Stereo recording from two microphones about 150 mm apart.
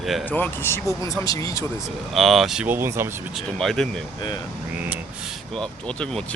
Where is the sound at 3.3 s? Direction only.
Centre (ahead or behind).